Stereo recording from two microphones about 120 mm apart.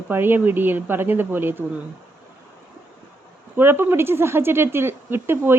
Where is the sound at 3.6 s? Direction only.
20° right (ahead or behind).